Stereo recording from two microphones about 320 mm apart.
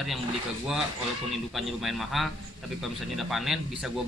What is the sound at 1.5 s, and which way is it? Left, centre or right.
A man's voice, centre.